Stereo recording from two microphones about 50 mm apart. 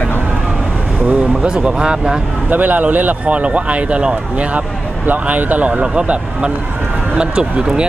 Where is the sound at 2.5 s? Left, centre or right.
Right.